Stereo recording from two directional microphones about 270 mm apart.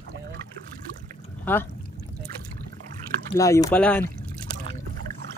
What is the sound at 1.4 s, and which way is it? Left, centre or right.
Speech, centre.